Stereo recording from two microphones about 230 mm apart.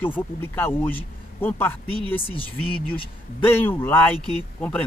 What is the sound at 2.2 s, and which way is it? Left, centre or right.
Speech, left.